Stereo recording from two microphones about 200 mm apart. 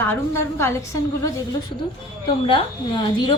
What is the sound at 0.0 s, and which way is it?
Speech, 10° left (ahead or behind).